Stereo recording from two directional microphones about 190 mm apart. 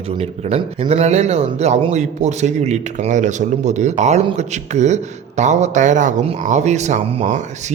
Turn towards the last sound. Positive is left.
turn(degrees=-40)  # may be behind; listen again after turning